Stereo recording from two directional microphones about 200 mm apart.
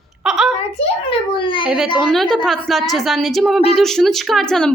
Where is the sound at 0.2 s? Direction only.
5° right (ahead or behind).